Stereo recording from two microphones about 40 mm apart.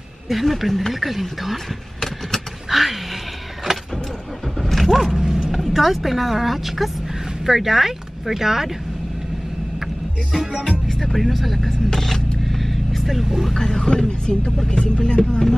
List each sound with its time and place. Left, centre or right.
0.3 s speech: centre
2.7 s a sound: centre
4.6 s vehicle: centre
5.2 s bow-wow: centre
5.5 s speech: centre
10.9 s speech: centre
11.9 s vehicle: centre
13.5 s speech: centre